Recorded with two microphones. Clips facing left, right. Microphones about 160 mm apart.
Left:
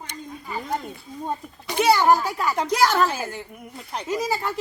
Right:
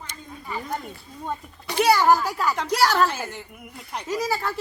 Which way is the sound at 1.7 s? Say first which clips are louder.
Even; 15° left (ahead or behind).